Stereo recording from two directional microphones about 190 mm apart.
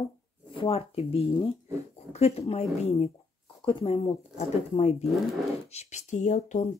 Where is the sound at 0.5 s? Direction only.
30° left (ahead or behind).